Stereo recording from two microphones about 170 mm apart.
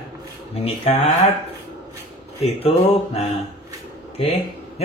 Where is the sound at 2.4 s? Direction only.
35° left (ahead or behind).